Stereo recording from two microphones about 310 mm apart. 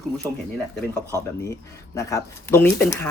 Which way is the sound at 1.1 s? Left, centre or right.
Centre.